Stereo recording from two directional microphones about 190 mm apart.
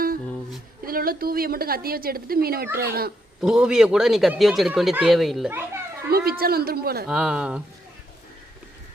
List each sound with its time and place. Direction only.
0.9 s a woman's voice: 50° right (ahead or behind)
3.4 s speech: 5° right (ahead or behind)
5.5 s children playing: 10° right (ahead or behind)
6.1 s a woman's voice: 55° right (ahead or behind)
7.1 s speech: 5° right (ahead or behind)